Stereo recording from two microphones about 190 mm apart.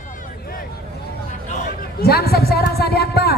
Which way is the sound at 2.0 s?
55° left (ahead or behind).